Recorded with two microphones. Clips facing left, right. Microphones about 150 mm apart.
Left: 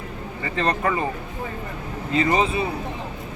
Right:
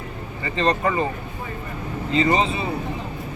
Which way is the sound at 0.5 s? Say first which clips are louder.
Right 2 dB; 5° left (ahead or behind).